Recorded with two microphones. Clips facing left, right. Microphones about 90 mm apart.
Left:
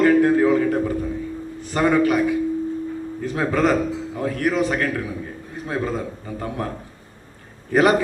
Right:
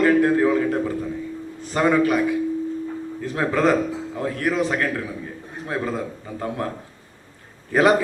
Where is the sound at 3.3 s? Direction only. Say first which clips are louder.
Even; 20° right (ahead or behind).